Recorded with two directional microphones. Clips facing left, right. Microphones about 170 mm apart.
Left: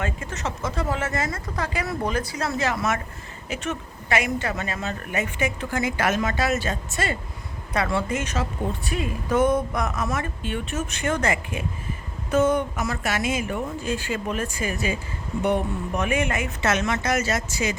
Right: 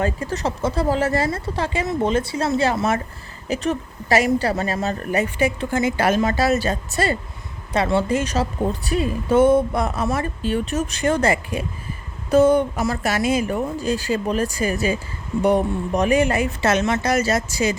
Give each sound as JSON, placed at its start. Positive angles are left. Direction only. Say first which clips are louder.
{"t": 0.0, "sound": "a woman's voice", "louder": "right 7 dB", "side_deg": -35}